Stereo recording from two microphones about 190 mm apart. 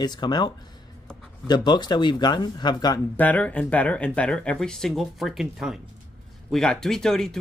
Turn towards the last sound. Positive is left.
turn(degrees=0)  # may be behind; listen again after turning